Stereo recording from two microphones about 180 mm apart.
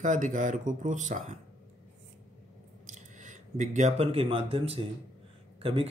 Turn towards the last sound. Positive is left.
turn(degrees=-30)  # may be behind; listen again after turning